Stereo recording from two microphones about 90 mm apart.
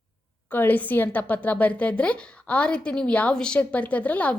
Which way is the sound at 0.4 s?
20° left (ahead or behind).